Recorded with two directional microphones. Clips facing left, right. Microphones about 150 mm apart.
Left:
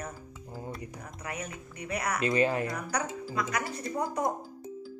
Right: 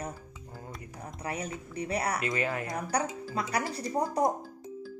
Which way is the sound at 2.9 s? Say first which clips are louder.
Right 2 dB; 30° right (ahead or behind).